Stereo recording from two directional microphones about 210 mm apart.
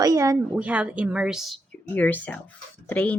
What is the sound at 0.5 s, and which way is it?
Speech, 5° right (ahead or behind).